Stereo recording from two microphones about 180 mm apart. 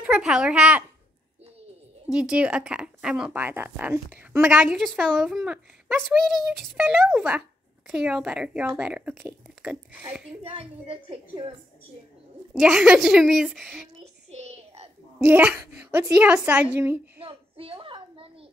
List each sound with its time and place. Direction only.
0.0 s speech: 5° right (ahead or behind)
2.0 s speech: 5° right (ahead or behind)
4.7 s speech: centre (ahead or behind)
10.4 s a woman's voice: 30° right (ahead or behind)
12.5 s speech: 5° right (ahead or behind)
13.9 s child singing: 35° right (ahead or behind)
15.1 s speech: 10° right (ahead or behind)
17.3 s a sound: 30° right (ahead or behind)